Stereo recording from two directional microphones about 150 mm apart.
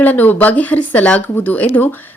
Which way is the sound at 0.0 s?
10° left (ahead or behind).